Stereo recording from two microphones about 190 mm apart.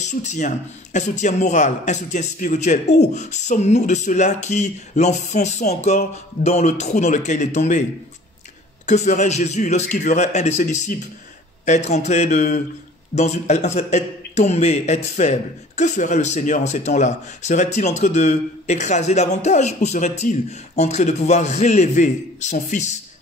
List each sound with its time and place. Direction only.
0.0 s a man's voice: 40° left (ahead or behind)
8.8 s a man's voice: 40° left (ahead or behind)